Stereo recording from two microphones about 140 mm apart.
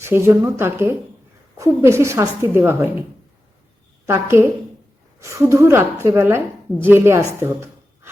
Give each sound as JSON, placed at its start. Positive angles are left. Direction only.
{"t": 0.0, "sound": "a woman's voice", "side_deg": -20}
{"t": 4.0, "sound": "a woman's voice", "side_deg": -20}
{"t": 7.4, "sound": "a sound", "side_deg": -15}